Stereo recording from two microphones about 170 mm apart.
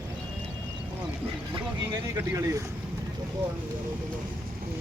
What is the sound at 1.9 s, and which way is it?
Speech, 20° right (ahead or behind).